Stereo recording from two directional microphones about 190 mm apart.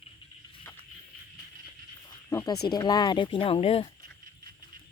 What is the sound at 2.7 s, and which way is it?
Speech, 20° left (ahead or behind).